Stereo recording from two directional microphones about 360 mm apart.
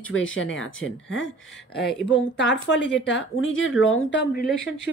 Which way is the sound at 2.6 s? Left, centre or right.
Left.